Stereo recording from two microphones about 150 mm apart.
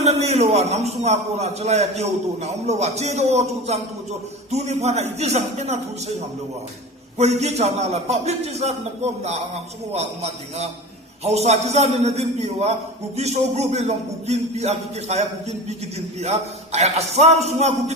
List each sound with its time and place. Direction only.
0.0 s a man's voice: 45° right (ahead or behind)
7.2 s a man's voice: 45° right (ahead or behind)